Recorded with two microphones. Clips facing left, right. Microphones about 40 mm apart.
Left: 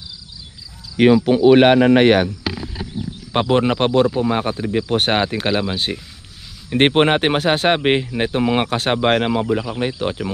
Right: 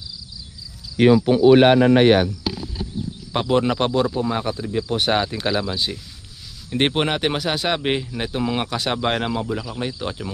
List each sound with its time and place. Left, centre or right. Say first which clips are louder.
0.9 s speech: left 2 dB; left
3.3 s speech: left 3 dB; left